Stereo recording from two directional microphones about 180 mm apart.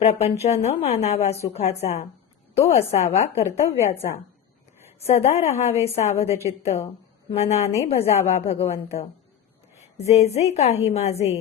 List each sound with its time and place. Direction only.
0.0 s a woman's voice: 35° left (ahead or behind)
3.4 s a woman's voice: 15° left (ahead or behind)
4.9 s a woman's voice: 35° left (ahead or behind)